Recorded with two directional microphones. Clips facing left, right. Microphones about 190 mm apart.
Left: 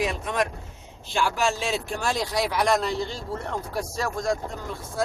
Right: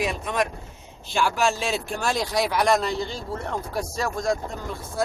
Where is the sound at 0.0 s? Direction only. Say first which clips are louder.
Even; 10° right (ahead or behind).